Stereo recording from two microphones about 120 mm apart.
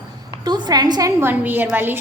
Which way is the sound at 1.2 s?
15° right (ahead or behind).